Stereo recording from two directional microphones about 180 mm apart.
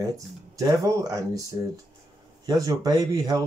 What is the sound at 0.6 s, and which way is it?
Speech, 20° right (ahead or behind).